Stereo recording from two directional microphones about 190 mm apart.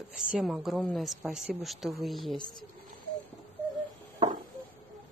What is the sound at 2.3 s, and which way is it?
Speech, 25° left (ahead or behind).